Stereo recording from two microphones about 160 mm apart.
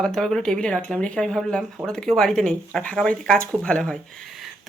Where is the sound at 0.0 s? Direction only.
5° left (ahead or behind).